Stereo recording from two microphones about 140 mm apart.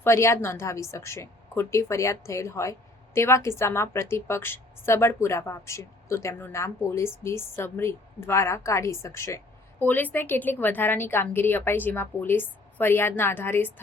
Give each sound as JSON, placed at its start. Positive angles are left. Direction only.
{"t": 0.0, "sound": "a woman's voice", "side_deg": 20}